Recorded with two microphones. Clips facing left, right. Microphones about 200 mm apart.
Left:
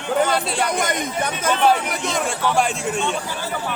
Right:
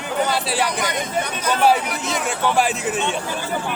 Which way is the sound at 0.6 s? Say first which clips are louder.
Left 1 dB; 50° left (ahead or behind).